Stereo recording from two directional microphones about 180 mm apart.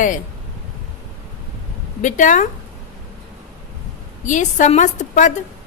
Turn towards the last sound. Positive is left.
turn(degrees=45)  # may be behind; listen again after turning